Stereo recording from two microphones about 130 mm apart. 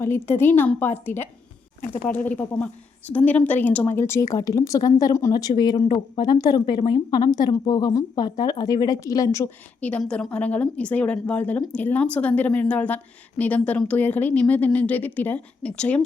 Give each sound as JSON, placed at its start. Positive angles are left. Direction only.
{"t": 0.0, "sound": "a woman's voice", "side_deg": 15}
{"t": 9.8, "sound": "a woman's voice", "side_deg": 10}